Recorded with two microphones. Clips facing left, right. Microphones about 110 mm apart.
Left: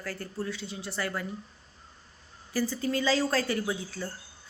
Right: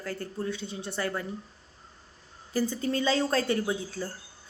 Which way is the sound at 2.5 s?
20° right (ahead or behind).